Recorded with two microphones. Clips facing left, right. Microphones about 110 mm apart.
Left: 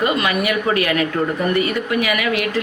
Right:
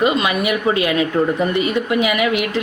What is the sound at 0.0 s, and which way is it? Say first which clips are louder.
Speech: right 2 dB; 20° right (ahead or behind).